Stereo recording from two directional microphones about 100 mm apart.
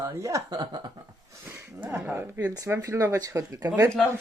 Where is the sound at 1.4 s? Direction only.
25° right (ahead or behind).